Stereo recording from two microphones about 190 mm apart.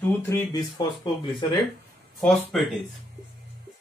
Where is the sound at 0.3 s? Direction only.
15° left (ahead or behind).